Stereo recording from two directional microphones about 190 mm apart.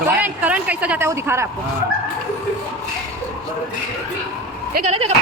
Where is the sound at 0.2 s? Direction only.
5° right (ahead or behind).